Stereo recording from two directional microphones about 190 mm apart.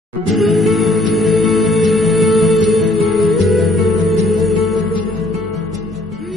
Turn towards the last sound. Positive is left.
turn(degrees=0)  # may be behind; listen again after turning